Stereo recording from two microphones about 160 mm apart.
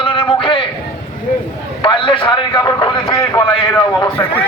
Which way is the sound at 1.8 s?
30° left (ahead or behind).